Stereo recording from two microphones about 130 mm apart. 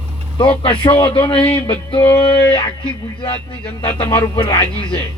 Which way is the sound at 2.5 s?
45° left (ahead or behind).